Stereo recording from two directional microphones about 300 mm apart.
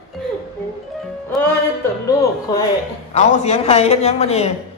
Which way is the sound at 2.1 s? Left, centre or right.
Centre.